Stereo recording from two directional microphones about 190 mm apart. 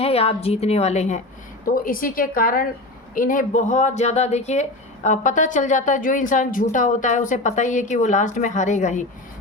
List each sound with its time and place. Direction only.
0.0 s a woman's voice: 30° left (ahead or behind)